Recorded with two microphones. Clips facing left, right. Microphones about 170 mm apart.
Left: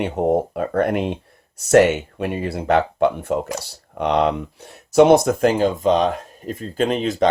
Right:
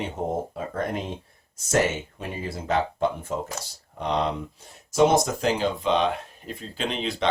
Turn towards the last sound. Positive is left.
turn(degrees=45)  # may be behind; listen again after turning